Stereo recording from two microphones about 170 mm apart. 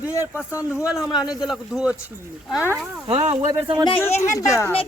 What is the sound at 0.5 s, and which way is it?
Speech, 15° left (ahead or behind).